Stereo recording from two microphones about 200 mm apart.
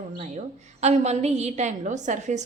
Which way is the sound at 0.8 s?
35° right (ahead or behind).